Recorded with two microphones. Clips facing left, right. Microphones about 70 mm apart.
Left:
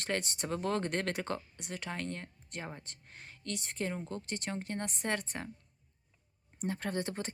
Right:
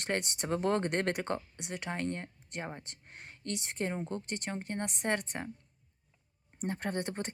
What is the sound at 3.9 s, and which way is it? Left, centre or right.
Speech, right.